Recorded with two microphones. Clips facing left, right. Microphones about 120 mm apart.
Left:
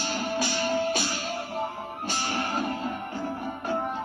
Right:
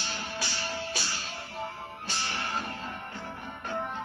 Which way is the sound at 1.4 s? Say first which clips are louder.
Left 6 dB; 45° left (ahead or behind).